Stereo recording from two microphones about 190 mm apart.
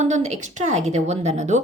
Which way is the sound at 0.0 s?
35° right (ahead or behind).